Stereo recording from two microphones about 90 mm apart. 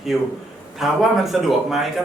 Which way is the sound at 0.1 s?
Centre (ahead or behind).